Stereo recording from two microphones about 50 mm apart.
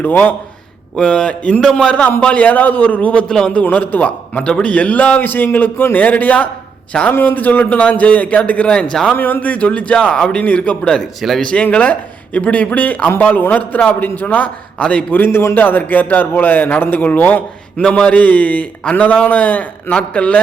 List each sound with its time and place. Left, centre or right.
0.0 s a man's voice: left
0.9 s speech: centre
3.2 s speech: centre
3.5 s a man's voice: left
4.4 s a man's voice: centre; by 5.8 s left
5.9 s a man's voice: left
7.1 s a man's voice: left
9.1 s a man's voice: left
15.1 s a man's voice: left
17.7 s speech: centre
18.1 s a man's voice: left